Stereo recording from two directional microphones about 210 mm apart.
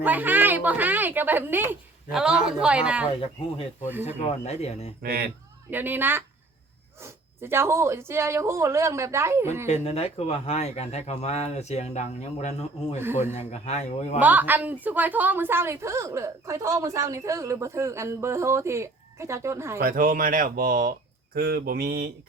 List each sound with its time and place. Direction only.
0.0 s a woman's voice: 10° right (ahead or behind)
4.4 s speech: 30° left (ahead or behind)
5.0 s mantra: 50° right (ahead or behind)
5.7 s a woman's voice: 10° right (ahead or behind)
9.6 s speech: 30° left (ahead or behind)
14.2 s a woman's voice: 10° right (ahead or behind)
19.8 s speech: 40° right (ahead or behind)
21.3 s mantra: 45° right (ahead or behind)